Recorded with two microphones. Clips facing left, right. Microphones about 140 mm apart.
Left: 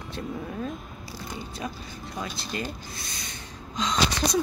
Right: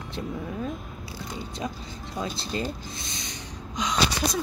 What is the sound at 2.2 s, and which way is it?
Speech, 25° right (ahead or behind).